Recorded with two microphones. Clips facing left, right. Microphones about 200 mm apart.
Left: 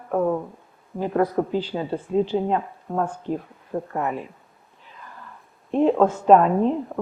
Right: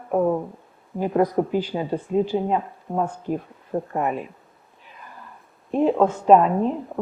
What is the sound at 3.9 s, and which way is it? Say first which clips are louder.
Speech: right 2 dB; 20° right (ahead or behind).